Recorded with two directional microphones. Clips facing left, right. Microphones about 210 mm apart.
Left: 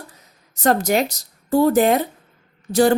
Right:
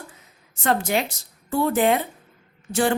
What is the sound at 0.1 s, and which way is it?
A woman's voice, 40° left (ahead or behind).